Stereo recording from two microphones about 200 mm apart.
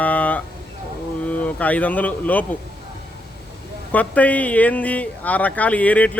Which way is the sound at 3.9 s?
10° left (ahead or behind).